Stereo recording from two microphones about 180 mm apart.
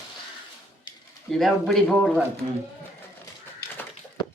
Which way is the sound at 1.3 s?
Centre (ahead or behind).